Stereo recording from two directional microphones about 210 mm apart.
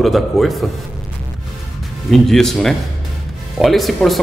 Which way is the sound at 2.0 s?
Centre (ahead or behind).